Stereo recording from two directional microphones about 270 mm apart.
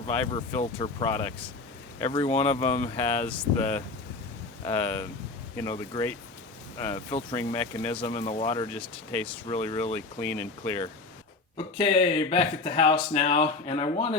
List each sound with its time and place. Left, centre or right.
0.3 s speech: centre
2.9 s speech: centre
8.8 s speech: centre
9.5 s speech: centre
11.5 s speech: left